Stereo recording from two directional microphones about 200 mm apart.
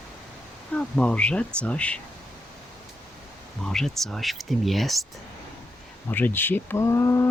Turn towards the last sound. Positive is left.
turn(degrees=15)  # may be behind; listen again after turning